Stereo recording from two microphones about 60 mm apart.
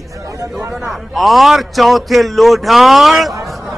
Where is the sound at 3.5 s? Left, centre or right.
Centre.